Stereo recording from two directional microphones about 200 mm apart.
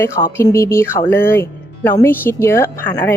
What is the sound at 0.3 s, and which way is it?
Speech, 15° left (ahead or behind).